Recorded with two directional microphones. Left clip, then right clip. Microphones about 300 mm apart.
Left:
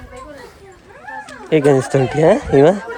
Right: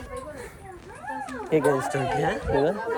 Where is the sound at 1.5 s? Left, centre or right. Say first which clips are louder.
Left 8 dB; left.